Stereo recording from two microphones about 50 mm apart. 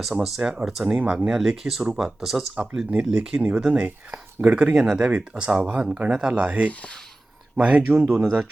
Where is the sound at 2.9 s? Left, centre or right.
Centre.